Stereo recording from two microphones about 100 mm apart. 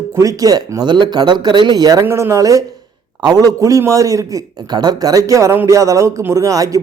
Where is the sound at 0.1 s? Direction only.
35° right (ahead or behind).